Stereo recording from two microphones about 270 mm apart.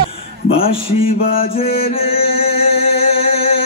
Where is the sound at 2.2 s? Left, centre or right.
Left.